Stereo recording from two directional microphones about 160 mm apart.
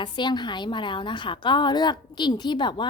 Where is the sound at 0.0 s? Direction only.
30° left (ahead or behind).